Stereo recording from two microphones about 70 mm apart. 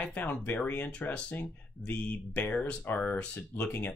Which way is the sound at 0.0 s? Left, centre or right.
Left.